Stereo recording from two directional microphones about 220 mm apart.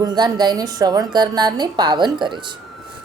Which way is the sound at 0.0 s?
20° right (ahead or behind).